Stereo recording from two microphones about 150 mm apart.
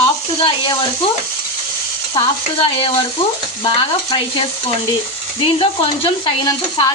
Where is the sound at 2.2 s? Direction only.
35° left (ahead or behind).